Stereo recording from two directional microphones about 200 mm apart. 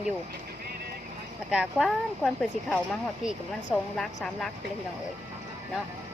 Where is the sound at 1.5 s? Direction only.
Centre (ahead or behind).